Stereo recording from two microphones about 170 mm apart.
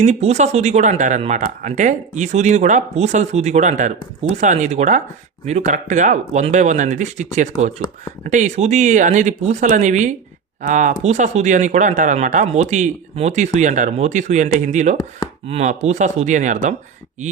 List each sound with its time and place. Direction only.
0.0 s speech: 40° right (ahead or behind)